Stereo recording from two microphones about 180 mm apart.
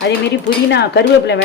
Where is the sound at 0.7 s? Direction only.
70° left (ahead or behind).